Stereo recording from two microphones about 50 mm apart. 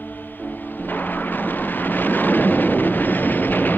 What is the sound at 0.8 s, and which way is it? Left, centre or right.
Vehicle, left.